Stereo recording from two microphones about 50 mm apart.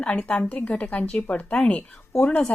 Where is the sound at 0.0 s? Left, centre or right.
Left.